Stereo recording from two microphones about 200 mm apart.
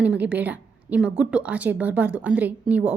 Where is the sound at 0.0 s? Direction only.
5° right (ahead or behind).